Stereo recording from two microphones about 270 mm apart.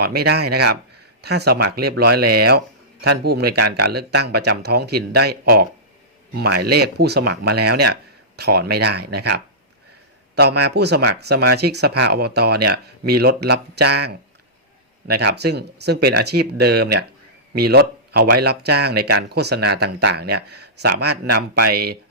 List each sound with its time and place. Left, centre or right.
0.0 s speech: right